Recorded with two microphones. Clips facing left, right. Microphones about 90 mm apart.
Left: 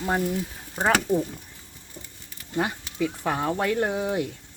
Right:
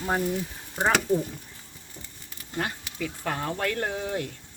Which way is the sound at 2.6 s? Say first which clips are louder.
Left 5 dB; 15° left (ahead or behind).